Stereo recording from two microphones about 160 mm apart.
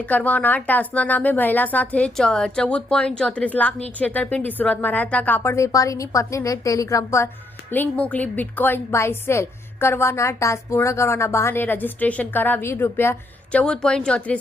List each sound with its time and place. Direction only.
0.0 s a woman's voice: 10° left (ahead or behind)